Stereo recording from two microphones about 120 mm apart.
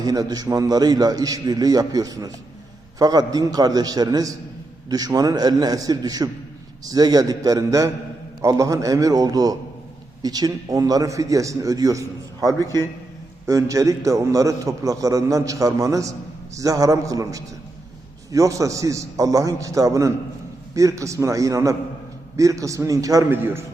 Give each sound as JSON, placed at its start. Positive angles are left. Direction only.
{"t": 0.0, "sound": "a man's voice", "side_deg": -30}
{"t": 23.3, "sound": "a man's voice", "side_deg": -20}